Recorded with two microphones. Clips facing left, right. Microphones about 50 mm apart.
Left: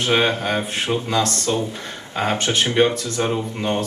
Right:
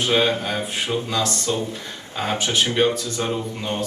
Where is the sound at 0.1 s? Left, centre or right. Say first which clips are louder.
Left 3 dB; left.